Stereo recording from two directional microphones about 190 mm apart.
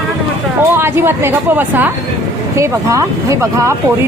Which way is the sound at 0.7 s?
15° right (ahead or behind).